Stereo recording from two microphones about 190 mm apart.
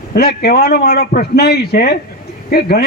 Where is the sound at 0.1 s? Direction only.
55° left (ahead or behind).